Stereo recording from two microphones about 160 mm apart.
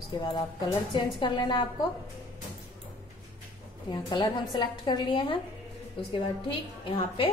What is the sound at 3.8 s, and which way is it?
A woman's voice, 25° left (ahead or behind).